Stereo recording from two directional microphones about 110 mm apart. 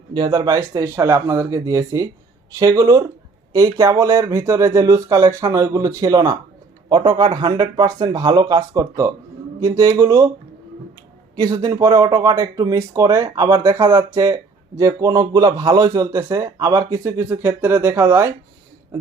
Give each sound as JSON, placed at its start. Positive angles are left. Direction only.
{"t": 0.1, "sound": "speech", "side_deg": -45}
{"t": 0.7, "sound": "a man's voice", "side_deg": -30}
{"t": 11.3, "sound": "a man's voice", "side_deg": -35}